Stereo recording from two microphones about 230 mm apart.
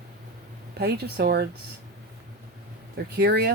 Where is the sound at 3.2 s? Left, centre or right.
Right.